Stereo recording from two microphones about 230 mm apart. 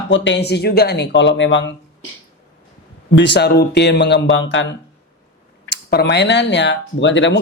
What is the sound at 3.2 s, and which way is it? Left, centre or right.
Speech, left.